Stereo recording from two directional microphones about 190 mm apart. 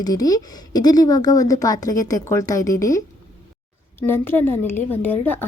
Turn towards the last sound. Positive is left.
turn(degrees=10)  # may be behind; listen again after turning